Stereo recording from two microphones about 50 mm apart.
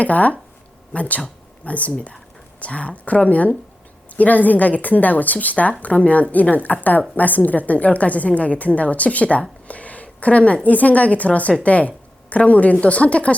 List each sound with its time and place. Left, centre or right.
0.0 s a woman's voice: left